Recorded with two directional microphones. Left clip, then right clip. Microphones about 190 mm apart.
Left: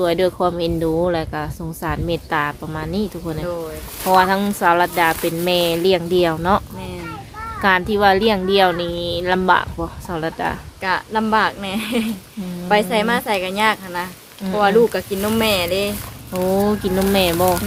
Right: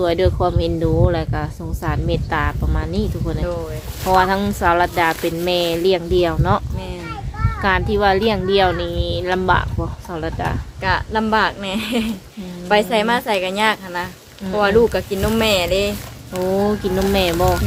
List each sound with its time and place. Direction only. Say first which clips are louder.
0.0 s speech: even; 10° left (ahead or behind)
7.6 s speech: left 2 dB; 15° left (ahead or behind)
10.8 s speech: right 2 dB; 5° left (ahead or behind)
17.3 s speech: even; 35° left (ahead or behind)